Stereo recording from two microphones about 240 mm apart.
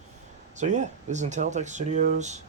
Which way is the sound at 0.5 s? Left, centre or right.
Right.